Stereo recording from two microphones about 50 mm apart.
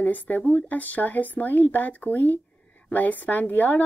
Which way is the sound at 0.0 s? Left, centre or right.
Left.